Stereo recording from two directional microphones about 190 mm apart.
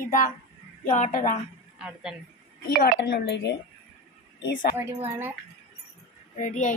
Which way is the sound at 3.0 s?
65° left (ahead or behind).